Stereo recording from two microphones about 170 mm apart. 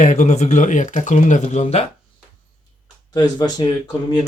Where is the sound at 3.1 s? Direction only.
25° left (ahead or behind).